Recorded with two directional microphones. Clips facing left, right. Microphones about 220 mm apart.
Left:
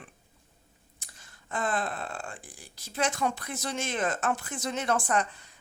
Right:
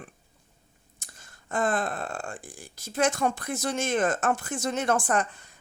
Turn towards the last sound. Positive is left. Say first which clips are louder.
# right 2 dB
turn(degrees=-50)  # may be behind; listen again after turning